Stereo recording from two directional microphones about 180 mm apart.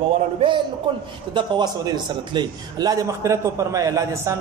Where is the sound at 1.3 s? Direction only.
25° right (ahead or behind).